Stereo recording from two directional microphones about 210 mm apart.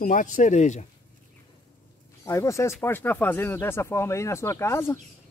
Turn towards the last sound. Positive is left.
turn(degrees=10)  # may be behind; listen again after turning